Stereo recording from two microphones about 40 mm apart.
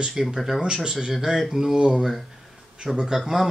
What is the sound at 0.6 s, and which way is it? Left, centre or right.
Speech, right.